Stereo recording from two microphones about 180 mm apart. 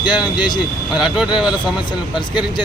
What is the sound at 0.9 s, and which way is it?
Speech, centre (ahead or behind).